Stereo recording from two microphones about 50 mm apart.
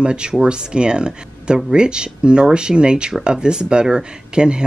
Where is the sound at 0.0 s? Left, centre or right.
Centre.